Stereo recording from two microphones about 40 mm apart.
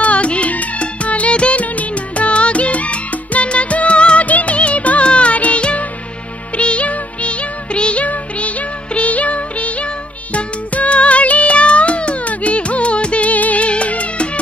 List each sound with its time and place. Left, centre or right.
0.0 s music: left